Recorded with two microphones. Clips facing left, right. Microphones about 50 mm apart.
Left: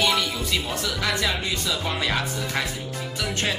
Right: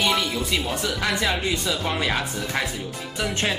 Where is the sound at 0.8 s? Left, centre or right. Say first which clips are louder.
Right 1 dB; centre.